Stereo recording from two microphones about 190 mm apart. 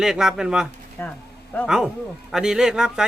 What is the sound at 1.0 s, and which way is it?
Speech, 15° left (ahead or behind).